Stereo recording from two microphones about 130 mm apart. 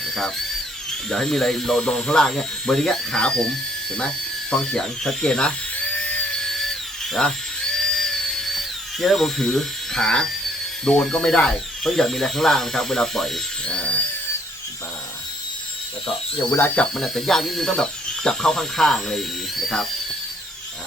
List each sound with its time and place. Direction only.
1.1 s speech: 5° left (ahead or behind)
4.5 s drill: 5° left (ahead or behind)
10.8 s speech: 5° left (ahead or behind)
16.6 s speech: 15° left (ahead or behind)
16.9 s speech: centre (ahead or behind)